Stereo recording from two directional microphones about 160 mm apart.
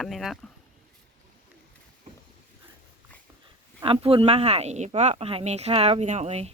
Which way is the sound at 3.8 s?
35° right (ahead or behind).